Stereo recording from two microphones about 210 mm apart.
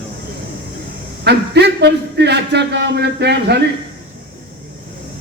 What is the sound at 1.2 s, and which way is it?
A man's voice, 55° right (ahead or behind).